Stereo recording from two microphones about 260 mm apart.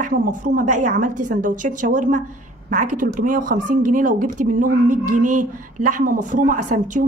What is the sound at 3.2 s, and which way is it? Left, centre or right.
A woman's voice, right.